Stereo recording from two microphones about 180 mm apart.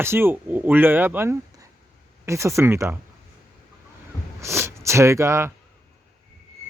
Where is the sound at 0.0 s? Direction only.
15° right (ahead or behind).